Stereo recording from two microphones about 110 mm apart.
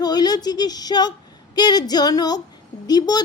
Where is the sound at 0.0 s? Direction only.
35° left (ahead or behind).